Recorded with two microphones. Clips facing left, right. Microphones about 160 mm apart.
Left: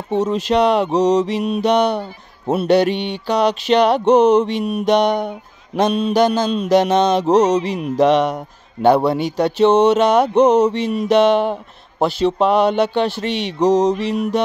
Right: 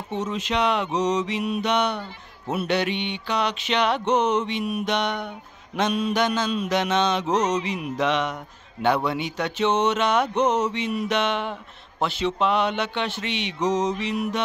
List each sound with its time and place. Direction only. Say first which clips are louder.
0.1 s mantra: left 10 dB; 35° left (ahead or behind)